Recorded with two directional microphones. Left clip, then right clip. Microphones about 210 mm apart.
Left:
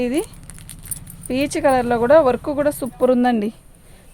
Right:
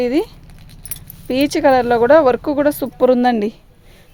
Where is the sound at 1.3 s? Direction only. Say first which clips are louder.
Right 4 dB; 45° right (ahead or behind).